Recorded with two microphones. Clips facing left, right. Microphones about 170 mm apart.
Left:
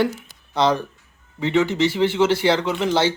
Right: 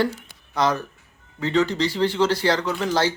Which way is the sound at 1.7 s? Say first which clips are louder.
Left 3 dB; 20° left (ahead or behind).